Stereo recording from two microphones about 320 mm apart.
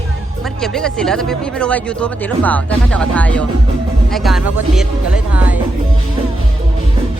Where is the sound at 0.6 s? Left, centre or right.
Centre.